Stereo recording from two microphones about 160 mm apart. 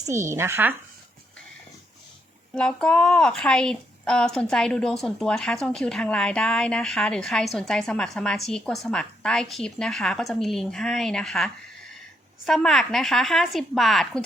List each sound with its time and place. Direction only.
0.0 s speech: 20° right (ahead or behind)
2.6 s a woman's voice: 5° left (ahead or behind)